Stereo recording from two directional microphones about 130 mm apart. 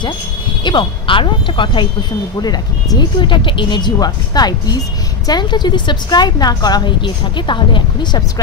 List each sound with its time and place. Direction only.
0.7 s speech: 40° left (ahead or behind)